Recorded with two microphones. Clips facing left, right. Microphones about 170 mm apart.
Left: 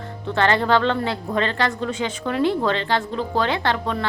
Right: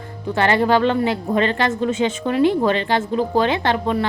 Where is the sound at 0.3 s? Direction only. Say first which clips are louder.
Right 2 dB; 15° right (ahead or behind).